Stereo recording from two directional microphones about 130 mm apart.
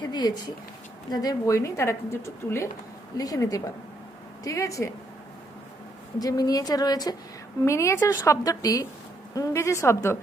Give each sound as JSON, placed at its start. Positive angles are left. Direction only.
{"t": 0.0, "sound": "speech", "side_deg": 35}
{"t": 6.1, "sound": "speech", "side_deg": 30}